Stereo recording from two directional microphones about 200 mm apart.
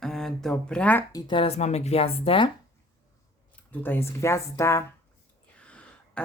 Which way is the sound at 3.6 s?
10° left (ahead or behind).